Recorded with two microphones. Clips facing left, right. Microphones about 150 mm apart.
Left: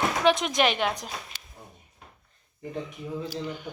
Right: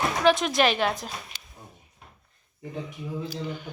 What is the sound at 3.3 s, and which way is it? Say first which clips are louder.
Speech: even; 15° left (ahead or behind).